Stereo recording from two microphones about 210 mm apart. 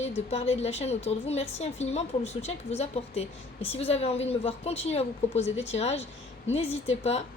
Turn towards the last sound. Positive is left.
turn(degrees=30)  # may be behind; listen again after turning